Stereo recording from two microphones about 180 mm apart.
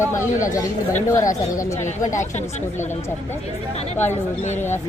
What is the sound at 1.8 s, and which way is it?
Speech, 45° left (ahead or behind).